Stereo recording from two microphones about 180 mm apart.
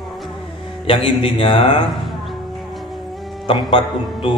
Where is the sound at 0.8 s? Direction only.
30° left (ahead or behind).